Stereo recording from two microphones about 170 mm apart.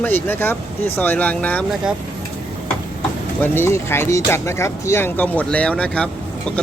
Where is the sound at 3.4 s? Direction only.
15° left (ahead or behind).